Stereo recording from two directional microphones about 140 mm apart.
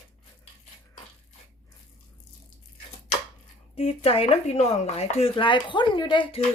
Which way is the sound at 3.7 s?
45° left (ahead or behind).